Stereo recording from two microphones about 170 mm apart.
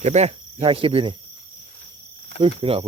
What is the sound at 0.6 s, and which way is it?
Speech, 30° right (ahead or behind).